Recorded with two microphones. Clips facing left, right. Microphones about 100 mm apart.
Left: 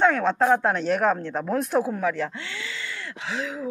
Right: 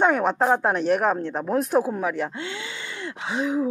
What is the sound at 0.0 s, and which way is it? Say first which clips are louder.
Speech: even; 15° right (ahead or behind).